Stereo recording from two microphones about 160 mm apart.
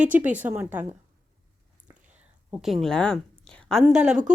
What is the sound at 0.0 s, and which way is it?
Speech, 10° right (ahead or behind).